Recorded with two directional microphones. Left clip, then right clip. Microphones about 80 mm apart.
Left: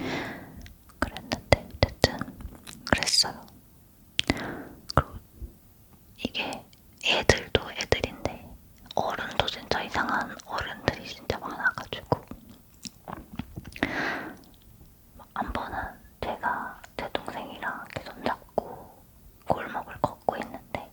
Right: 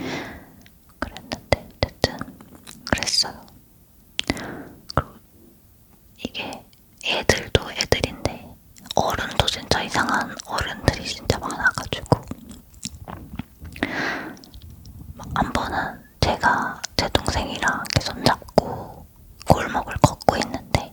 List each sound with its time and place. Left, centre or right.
0.0 s whispering: centre; by 12.9 s right
13.1 s biting: centre
13.6 s a sound: centre
15.2 s whispering: right